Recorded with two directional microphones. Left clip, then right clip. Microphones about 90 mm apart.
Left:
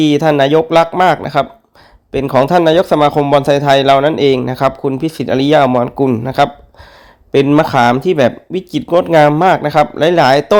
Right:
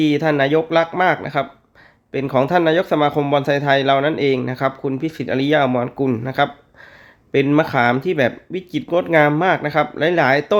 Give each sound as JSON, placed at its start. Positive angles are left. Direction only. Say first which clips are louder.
{"t": 0.0, "sound": "speech", "louder": "left 6 dB", "side_deg": 35}
{"t": 7.6, "sound": "speech", "louder": "left 6 dB", "side_deg": 40}